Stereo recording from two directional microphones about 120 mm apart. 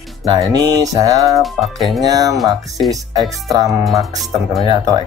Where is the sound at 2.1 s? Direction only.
30° right (ahead or behind).